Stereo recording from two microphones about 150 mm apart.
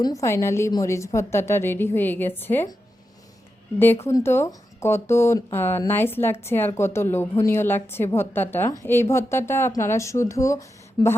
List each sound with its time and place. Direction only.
0.0 s speech: 20° left (ahead or behind)
4.0 s speech: 15° left (ahead or behind)